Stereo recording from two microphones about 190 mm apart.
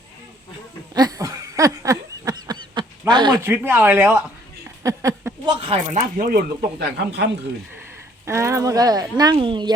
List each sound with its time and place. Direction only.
0.9 s a sound: 20° right (ahead or behind)
3.1 s speech: 25° right (ahead or behind)
3.4 s speech: 10° right (ahead or behind)
4.8 s a sound: 15° right (ahead or behind)
5.5 s speech: 30° right (ahead or behind)
6.0 s speech: 45° right (ahead or behind); by 7.3 s 60° right (ahead or behind)
8.2 s speech: 15° right (ahead or behind)